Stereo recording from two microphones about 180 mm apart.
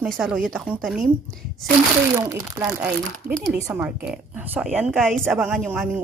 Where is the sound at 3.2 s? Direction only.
55° right (ahead or behind).